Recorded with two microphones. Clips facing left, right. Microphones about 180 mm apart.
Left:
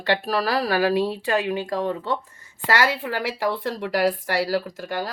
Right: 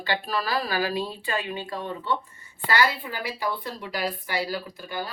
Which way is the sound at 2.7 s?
80° left.